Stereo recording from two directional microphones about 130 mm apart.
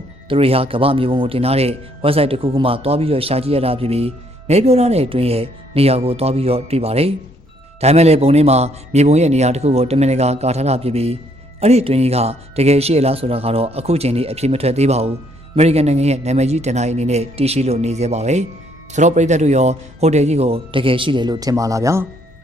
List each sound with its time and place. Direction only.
0.3 s a man's voice: 45° right (ahead or behind); by 22.0 s 25° right (ahead or behind)